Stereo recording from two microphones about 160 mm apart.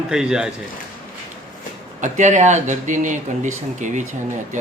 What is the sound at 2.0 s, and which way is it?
Speech, 50° right (ahead or behind).